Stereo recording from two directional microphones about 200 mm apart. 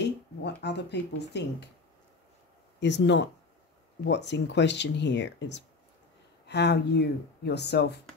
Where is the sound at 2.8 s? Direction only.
60° left (ahead or behind).